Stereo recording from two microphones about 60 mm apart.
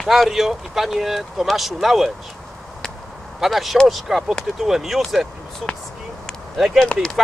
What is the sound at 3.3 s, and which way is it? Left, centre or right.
Speech, centre.